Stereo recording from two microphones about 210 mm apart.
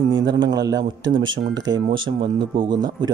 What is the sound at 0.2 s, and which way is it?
Speech, 20° right (ahead or behind).